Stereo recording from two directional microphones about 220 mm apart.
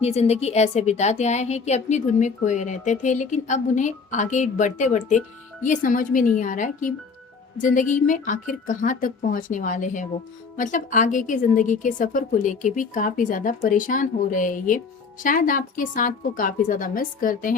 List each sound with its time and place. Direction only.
0.0 s a woman's voice: 30° left (ahead or behind)